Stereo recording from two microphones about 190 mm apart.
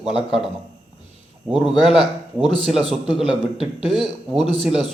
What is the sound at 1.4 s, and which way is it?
Speech, centre (ahead or behind).